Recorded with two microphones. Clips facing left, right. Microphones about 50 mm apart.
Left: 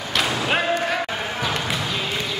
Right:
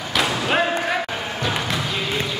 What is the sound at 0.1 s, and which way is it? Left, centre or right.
Basketball bounce, centre.